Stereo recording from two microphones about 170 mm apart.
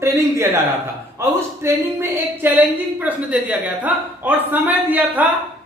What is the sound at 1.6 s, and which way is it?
A woman's voice, 15° right (ahead or behind).